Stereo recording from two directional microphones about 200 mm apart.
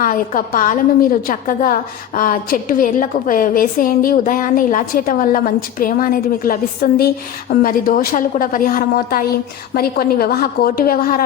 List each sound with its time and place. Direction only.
0.0 s a woman's voice: 45° left (ahead or behind)